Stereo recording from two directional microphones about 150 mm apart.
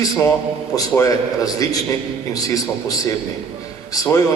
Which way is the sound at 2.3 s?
25° left (ahead or behind).